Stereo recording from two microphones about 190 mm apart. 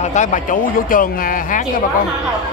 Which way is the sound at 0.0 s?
40° left (ahead or behind).